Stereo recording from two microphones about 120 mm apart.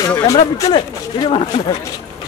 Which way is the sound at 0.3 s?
30° left (ahead or behind).